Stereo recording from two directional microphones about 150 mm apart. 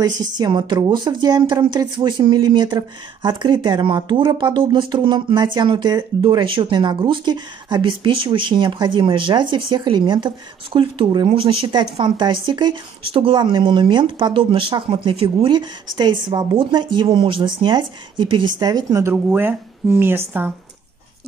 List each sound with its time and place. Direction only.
0.2 s speech: 25° right (ahead or behind)